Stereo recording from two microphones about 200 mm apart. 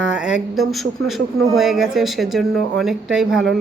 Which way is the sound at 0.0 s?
5° right (ahead or behind).